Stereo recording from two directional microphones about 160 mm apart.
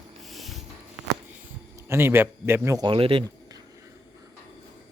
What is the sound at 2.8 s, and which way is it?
Speech, 35° right (ahead or behind).